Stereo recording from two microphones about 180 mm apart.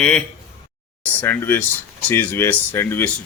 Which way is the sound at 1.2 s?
10° left (ahead or behind).